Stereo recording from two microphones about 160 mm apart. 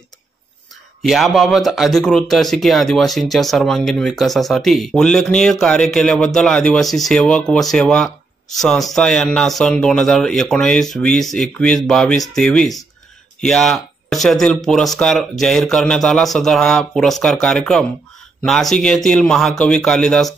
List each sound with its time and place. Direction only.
1.0 s speech: centre (ahead or behind)